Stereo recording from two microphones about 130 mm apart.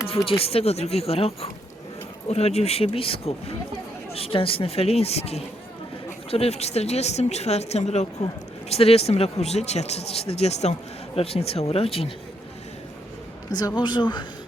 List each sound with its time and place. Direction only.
0.3 s speech: 50° left (ahead or behind)
13.5 s speech: 30° left (ahead or behind)